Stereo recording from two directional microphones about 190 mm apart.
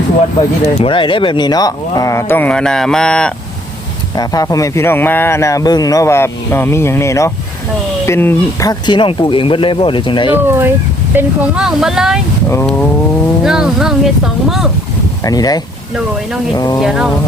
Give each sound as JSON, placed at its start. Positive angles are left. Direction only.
{"t": 0.6, "sound": "speech", "side_deg": 30}
{"t": 4.2, "sound": "speech", "side_deg": 20}
{"t": 8.9, "sound": "speech", "side_deg": 25}
{"t": 10.3, "sound": "speech", "side_deg": -10}
{"t": 12.5, "sound": "speech", "side_deg": 10}
{"t": 13.4, "sound": "speech", "side_deg": -5}
{"t": 15.2, "sound": "speech", "side_deg": 20}
{"t": 16.8, "sound": "speech", "side_deg": 0}